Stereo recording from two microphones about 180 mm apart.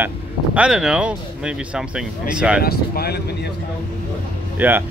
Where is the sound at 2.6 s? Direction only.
60° left (ahead or behind).